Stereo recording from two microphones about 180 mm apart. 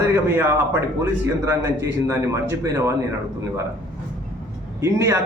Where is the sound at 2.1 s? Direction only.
15° right (ahead or behind).